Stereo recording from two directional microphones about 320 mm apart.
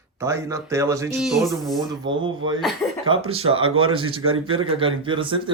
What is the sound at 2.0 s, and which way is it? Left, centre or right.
Speech, centre.